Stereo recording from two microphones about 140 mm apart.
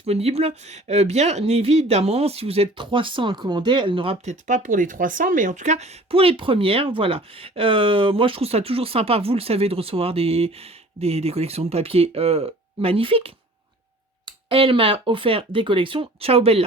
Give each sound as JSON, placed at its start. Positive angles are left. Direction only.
{"t": 0.0, "sound": "speech", "side_deg": -45}
{"t": 4.3, "sound": "speech", "side_deg": -65}